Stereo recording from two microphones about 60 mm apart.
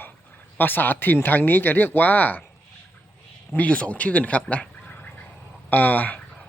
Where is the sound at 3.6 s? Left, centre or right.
Left.